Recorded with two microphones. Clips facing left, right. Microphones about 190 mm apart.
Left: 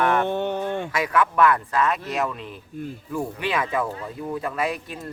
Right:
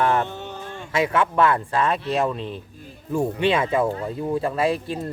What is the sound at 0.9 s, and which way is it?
Speech, 25° right (ahead or behind).